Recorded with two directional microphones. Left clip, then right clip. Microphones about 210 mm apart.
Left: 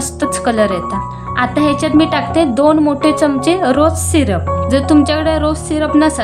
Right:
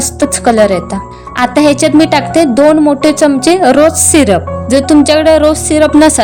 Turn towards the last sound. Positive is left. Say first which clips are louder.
# right 7 dB
turn(degrees=-35)  # may be behind; listen again after turning